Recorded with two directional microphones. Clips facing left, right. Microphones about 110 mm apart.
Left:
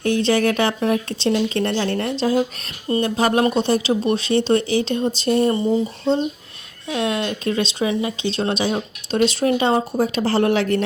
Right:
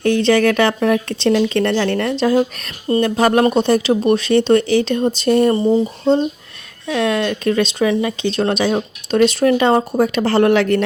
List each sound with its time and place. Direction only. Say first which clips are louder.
0.0 s speech: right 4 dB; 65° right (ahead or behind)
5.5 s speech: right 4 dB; 35° right (ahead or behind)
6.8 s speech: right 5 dB; 55° right (ahead or behind)